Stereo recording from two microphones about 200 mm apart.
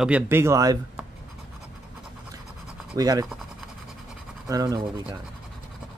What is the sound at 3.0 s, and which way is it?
Speech, 20° right (ahead or behind).